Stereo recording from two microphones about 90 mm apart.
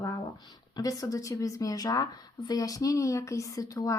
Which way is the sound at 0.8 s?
40° left (ahead or behind).